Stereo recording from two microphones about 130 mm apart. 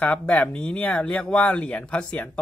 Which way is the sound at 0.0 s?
10° left (ahead or behind).